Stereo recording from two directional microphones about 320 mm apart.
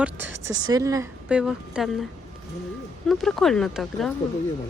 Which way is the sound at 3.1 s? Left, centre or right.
Centre.